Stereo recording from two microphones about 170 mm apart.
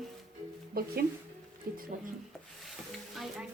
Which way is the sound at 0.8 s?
60° right (ahead or behind).